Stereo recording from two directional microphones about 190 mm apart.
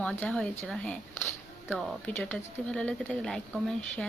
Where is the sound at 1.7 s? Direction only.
5° left (ahead or behind).